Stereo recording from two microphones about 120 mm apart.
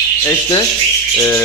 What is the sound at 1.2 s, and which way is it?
Speech, 15° left (ahead or behind).